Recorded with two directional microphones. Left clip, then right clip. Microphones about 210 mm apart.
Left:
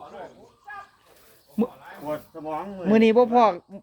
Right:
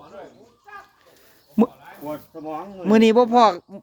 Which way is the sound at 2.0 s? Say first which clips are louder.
Left 1 dB; 10° left (ahead or behind).